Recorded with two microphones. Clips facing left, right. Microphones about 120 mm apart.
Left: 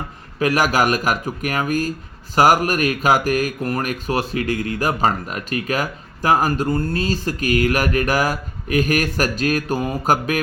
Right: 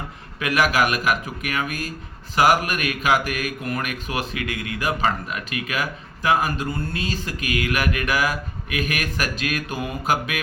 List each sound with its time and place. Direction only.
0.3 s speech: 35° left (ahead or behind)